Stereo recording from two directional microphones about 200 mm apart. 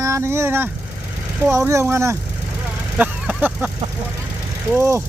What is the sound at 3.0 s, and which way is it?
Vehicle, 5° right (ahead or behind).